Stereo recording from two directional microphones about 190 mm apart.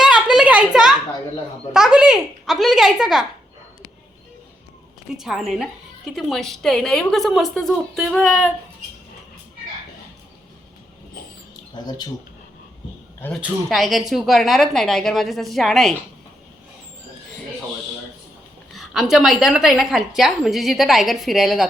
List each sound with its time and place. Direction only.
0.0 s a sound: 5° right (ahead or behind)
1.7 s a woman's voice: 5° right (ahead or behind)
5.1 s a woman's voice: centre (ahead or behind)
11.7 s speech: 20° left (ahead or behind)
13.1 s a man's voice: 10° left (ahead or behind)
18.7 s a woman's voice: centre (ahead or behind)